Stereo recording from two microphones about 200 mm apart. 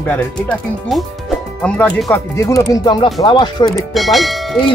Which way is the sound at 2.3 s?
15° left (ahead or behind).